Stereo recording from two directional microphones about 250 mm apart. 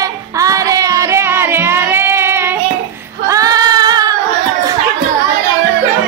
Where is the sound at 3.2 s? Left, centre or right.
Centre.